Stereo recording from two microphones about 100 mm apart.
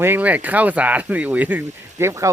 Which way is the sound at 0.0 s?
20° right (ahead or behind).